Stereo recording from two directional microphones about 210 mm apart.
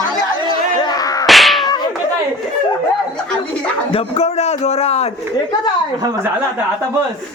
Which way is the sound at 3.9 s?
30° left (ahead or behind).